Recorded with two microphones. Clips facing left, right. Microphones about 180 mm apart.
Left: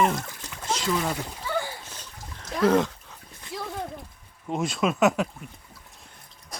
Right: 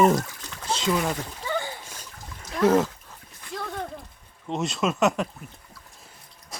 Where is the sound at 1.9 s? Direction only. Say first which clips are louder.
Even; 10° right (ahead or behind).